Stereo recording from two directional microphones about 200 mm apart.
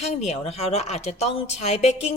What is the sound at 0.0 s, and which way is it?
A woman's voice, 30° left (ahead or behind).